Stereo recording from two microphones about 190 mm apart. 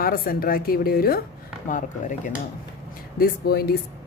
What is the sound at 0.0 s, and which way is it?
A woman's voice, 50° left (ahead or behind).